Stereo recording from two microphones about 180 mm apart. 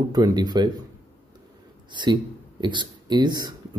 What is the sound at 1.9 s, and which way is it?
Speech, 25° right (ahead or behind).